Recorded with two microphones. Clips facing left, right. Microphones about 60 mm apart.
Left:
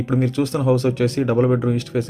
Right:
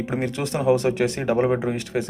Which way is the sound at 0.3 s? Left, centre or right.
Right.